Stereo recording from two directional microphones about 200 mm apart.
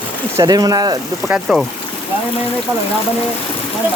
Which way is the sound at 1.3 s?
Centre (ahead or behind).